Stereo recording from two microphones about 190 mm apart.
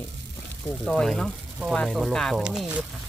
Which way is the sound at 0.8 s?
Centre (ahead or behind).